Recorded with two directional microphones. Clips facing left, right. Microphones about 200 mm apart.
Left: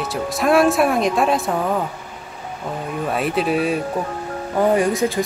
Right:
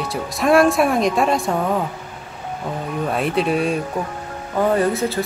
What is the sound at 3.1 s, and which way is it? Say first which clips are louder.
Speech: even; centre (ahead or behind).